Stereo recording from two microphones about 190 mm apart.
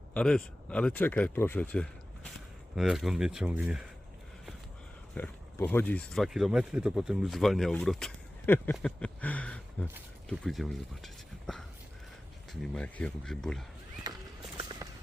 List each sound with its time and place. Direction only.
0.1 s speech: 5° left (ahead or behind)
5.1 s speech: 10° left (ahead or behind)
8.7 s a sound: 5° left (ahead or behind)
10.2 s speech: centre (ahead or behind)
12.6 s speech: 5° left (ahead or behind)
14.0 s horse: 20° right (ahead or behind)
14.6 s a sound: 20° right (ahead or behind)